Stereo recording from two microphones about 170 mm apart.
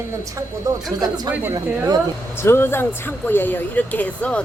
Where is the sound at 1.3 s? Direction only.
10° right (ahead or behind).